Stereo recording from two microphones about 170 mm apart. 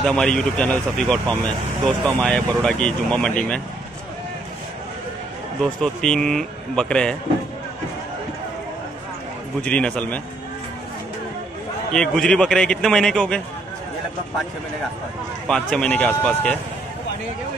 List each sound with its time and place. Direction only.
0.0 s speech: 5° left (ahead or behind)
1.2 s speech: 25° right (ahead or behind)
2.0 s speech: 5° left (ahead or behind)
5.6 s speech: 5° left (ahead or behind)
9.6 s speech: 5° left (ahead or behind)
11.9 s speech: 5° left (ahead or behind)
15.4 s speech: 5° left (ahead or behind)